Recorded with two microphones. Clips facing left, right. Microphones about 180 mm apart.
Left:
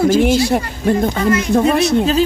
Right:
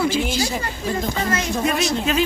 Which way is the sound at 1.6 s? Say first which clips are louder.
Left 8 dB; 35° left (ahead or behind).